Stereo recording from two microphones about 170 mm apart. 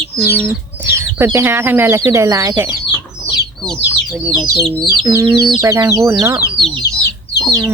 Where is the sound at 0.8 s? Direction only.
15° right (ahead or behind).